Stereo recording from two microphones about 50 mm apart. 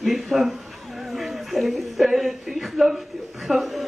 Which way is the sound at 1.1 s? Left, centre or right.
Centre.